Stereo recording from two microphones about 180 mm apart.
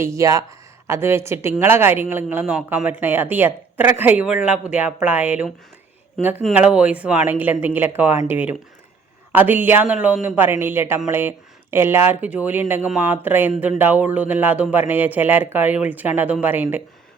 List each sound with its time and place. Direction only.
0.0 s a woman's voice: 15° right (ahead or behind)